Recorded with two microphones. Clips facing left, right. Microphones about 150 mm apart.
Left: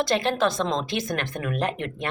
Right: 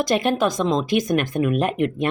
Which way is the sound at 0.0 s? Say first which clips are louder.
Right 3 dB; 15° right (ahead or behind).